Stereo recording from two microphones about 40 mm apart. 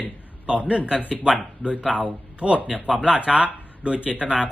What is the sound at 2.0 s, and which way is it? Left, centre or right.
Speech, right.